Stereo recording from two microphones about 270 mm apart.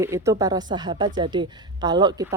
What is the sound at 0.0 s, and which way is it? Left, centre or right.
Speech, centre.